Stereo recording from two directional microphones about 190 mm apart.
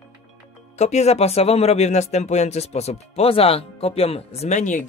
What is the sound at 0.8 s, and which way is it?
Speech, 35° left (ahead or behind).